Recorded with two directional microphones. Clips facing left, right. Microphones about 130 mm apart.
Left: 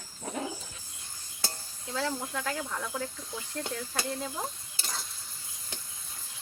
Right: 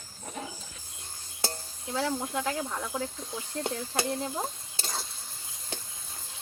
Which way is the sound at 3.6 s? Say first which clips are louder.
Right 5 dB; 25° right (ahead or behind).